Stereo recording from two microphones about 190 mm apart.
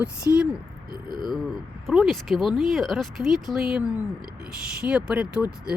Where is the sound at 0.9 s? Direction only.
20° left (ahead or behind).